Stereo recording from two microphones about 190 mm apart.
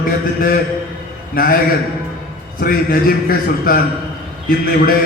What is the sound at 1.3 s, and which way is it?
Speech, 50° left (ahead or behind).